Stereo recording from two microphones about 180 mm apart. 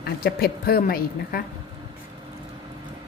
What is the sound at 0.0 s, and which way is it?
A woman's voice, 60° left (ahead or behind).